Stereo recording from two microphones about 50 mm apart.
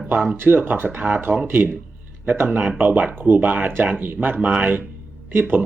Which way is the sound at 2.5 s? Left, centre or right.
Right.